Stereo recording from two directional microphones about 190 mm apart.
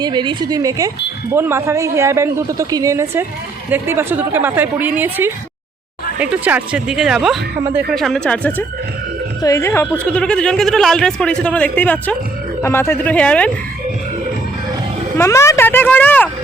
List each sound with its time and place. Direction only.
0.0 s a woman's voice: 25° right (ahead or behind); by 13.5 s 5° left (ahead or behind)
15.2 s speech: 15° left (ahead or behind)